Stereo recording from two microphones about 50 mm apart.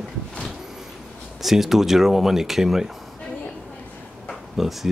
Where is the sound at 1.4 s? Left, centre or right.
Centre.